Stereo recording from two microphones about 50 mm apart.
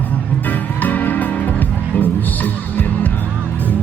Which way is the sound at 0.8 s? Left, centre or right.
Left.